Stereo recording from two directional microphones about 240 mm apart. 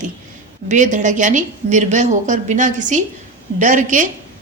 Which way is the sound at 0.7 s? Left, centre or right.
Right.